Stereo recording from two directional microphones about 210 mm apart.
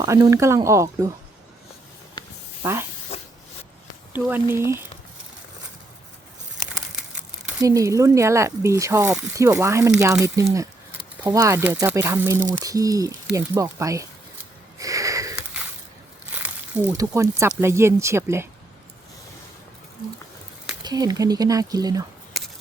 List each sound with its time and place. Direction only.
0.0 s speech: 15° right (ahead or behind)
3.1 s spray: 30° left (ahead or behind)
4.1 s speech: 10° right (ahead or behind)
7.6 s speech: 15° right (ahead or behind)
14.8 s a sound: 15° right (ahead or behind)
16.3 s speech: 10° right (ahead or behind)
20.8 s speech: 20° right (ahead or behind)